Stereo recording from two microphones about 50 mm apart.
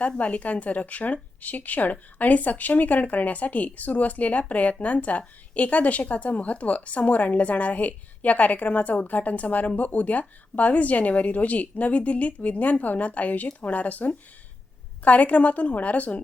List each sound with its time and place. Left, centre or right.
0.2 s a woman's voice: left